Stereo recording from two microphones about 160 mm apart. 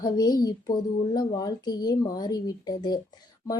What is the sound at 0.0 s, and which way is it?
Speech, 25° left (ahead or behind).